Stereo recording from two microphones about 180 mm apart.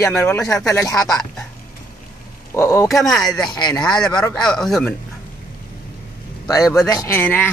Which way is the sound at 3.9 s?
20° left (ahead or behind).